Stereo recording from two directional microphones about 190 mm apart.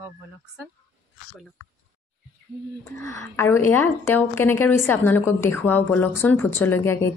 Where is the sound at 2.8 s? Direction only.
15° left (ahead or behind).